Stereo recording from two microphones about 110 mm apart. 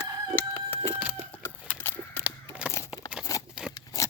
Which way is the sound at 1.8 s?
20° left (ahead or behind).